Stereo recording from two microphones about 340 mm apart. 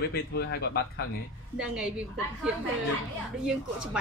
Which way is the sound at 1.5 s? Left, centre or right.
Centre.